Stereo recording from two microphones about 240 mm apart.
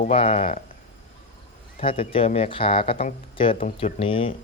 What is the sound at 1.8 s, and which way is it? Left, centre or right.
Speech, left.